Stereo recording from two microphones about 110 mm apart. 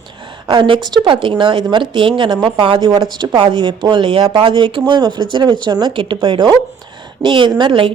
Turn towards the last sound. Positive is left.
turn(degrees=-50)  # may be behind; listen again after turning